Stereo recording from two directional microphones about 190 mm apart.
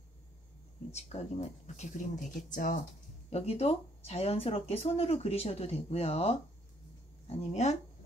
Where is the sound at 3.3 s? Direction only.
35° left (ahead or behind).